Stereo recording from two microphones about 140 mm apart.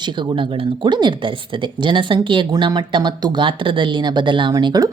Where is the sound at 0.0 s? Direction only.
35° right (ahead or behind).